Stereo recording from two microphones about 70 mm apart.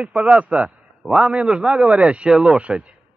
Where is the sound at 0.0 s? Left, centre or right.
Centre.